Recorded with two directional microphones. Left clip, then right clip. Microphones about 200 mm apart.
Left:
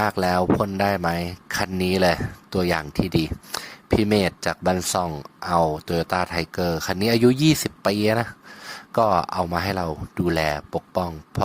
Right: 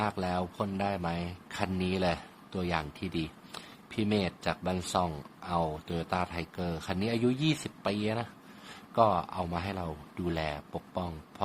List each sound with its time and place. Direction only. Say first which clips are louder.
0.0 s speech: left 11 dB; 40° left (ahead or behind)